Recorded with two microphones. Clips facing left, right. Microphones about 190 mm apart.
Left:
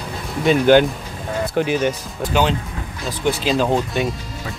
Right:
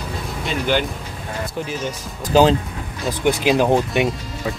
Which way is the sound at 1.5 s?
75° left (ahead or behind).